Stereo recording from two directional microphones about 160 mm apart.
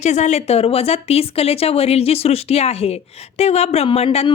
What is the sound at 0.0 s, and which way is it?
Speech, 45° left (ahead or behind).